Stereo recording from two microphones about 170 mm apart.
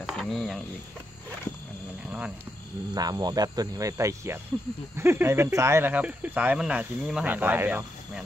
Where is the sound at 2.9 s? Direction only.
25° right (ahead or behind).